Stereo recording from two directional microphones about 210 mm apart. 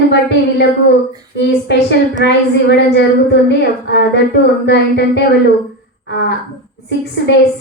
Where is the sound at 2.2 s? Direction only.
55° left (ahead or behind).